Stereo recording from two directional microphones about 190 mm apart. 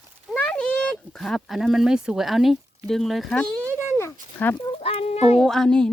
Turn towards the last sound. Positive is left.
turn(degrees=5)  # may be behind; listen again after turning